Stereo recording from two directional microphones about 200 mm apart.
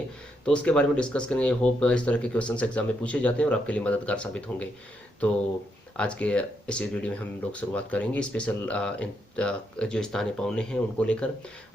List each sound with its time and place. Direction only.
0.4 s speech: 5° left (ahead or behind)
6.0 s speech: 5° left (ahead or behind)